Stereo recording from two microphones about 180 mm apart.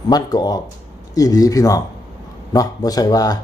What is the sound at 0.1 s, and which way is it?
Speech, 20° left (ahead or behind).